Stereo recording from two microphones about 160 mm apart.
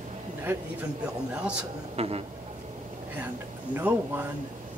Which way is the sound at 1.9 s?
40° right (ahead or behind).